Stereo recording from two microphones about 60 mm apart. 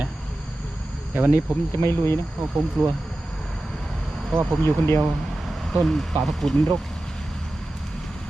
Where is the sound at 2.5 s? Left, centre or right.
Centre.